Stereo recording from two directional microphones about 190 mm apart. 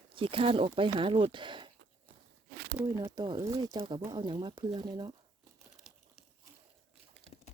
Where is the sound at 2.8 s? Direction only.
20° right (ahead or behind).